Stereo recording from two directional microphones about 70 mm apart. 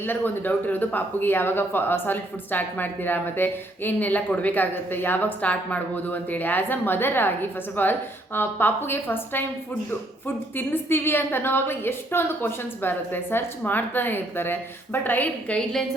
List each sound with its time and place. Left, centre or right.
0.0 s a woman's voice: left
10.5 s a woman's voice: left